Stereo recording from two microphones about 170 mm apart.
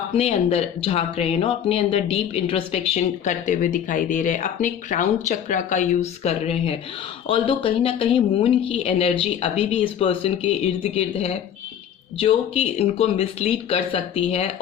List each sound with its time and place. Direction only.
0.2 s speech: 35° left (ahead or behind)